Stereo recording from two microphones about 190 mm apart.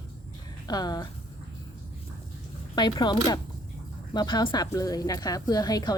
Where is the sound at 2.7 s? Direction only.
20° left (ahead or behind).